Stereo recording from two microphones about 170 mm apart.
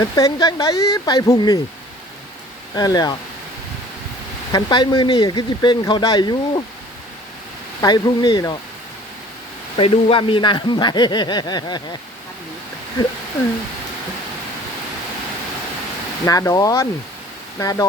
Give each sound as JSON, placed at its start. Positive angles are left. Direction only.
{"t": 0.0, "sound": "speech", "side_deg": 20}
{"t": 2.7, "sound": "speech", "side_deg": 25}
{"t": 4.5, "sound": "speech", "side_deg": 25}
{"t": 7.8, "sound": "speech", "side_deg": 25}
{"t": 9.7, "sound": "speech", "side_deg": 35}
{"t": 16.2, "sound": "speech", "side_deg": 20}